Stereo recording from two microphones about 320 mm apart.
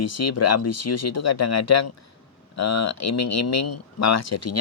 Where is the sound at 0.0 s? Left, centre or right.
Left.